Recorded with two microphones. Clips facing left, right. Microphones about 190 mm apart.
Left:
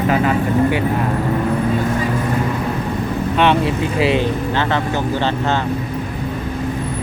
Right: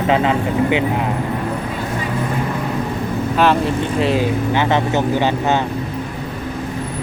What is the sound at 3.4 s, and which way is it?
Speech, centre (ahead or behind).